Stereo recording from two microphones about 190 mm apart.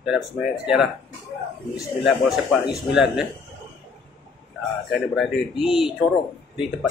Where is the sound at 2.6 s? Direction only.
Centre (ahead or behind).